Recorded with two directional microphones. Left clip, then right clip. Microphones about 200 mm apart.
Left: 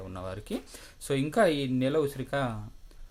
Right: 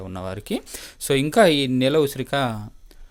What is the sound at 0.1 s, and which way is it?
Speech, 40° right (ahead or behind).